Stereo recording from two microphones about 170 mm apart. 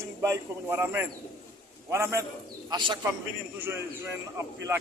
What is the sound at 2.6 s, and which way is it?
Speech, 25° right (ahead or behind).